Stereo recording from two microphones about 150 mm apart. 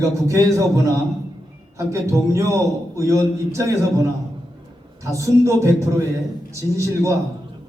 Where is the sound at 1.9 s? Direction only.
20° right (ahead or behind).